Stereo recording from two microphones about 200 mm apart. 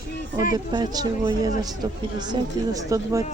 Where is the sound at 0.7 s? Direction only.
20° right (ahead or behind).